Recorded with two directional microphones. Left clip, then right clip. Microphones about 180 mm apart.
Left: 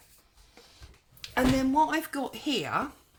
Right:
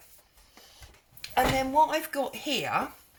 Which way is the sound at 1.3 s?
50° left (ahead or behind).